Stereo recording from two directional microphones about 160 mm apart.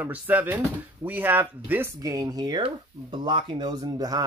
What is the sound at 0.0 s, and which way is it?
Speech, 10° right (ahead or behind).